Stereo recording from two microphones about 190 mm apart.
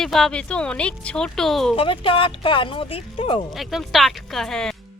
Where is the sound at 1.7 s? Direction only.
30° left (ahead or behind).